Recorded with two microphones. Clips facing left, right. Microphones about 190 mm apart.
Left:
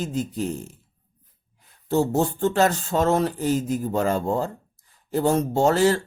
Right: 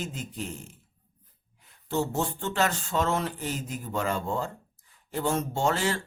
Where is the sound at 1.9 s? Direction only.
40° left (ahead or behind).